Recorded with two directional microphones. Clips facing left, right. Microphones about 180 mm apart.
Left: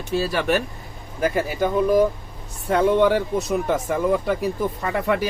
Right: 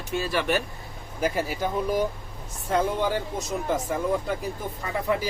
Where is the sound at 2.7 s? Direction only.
70° left (ahead or behind).